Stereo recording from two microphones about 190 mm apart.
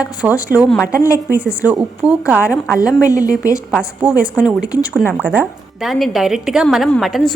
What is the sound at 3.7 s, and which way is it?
A woman's voice, 5° right (ahead or behind).